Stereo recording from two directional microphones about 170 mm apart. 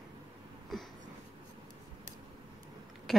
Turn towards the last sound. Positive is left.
turn(degrees=0)  # may be behind; listen again after turning